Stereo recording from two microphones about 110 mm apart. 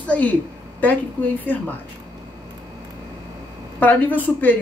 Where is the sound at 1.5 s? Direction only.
15° left (ahead or behind).